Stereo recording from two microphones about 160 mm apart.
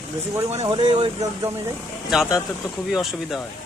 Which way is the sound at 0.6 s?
25° right (ahead or behind).